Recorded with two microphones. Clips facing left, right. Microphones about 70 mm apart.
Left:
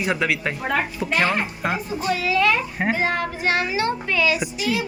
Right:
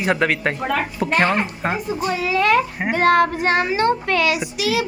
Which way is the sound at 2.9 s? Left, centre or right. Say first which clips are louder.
Right 10 dB; right.